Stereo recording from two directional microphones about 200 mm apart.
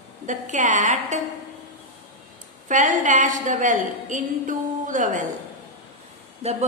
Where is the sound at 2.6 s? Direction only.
40° right (ahead or behind).